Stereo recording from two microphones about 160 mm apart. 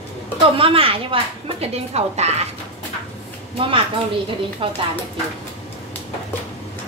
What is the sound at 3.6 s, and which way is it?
A woman's voice, 35° right (ahead or behind).